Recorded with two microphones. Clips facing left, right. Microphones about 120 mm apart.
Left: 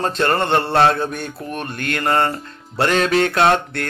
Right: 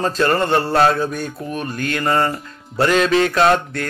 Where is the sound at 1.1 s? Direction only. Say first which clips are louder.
Right 2 dB; 60° left (ahead or behind).